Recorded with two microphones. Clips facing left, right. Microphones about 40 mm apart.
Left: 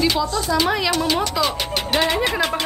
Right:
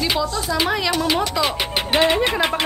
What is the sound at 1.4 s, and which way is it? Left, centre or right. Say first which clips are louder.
Speech: right 1 dB; centre.